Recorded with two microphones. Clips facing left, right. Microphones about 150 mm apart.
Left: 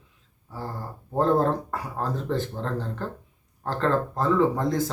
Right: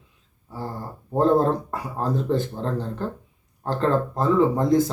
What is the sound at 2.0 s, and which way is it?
Speech, 15° right (ahead or behind).